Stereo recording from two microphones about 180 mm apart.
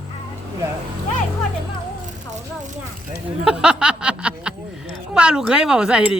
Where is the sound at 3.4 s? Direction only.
5° right (ahead or behind).